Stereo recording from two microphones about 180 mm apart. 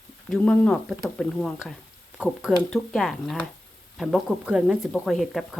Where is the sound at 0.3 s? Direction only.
5° left (ahead or behind).